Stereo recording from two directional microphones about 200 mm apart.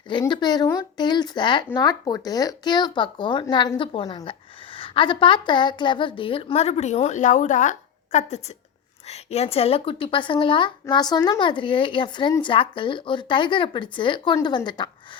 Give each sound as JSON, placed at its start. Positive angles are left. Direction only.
{"t": 0.1, "sound": "speech", "side_deg": 25}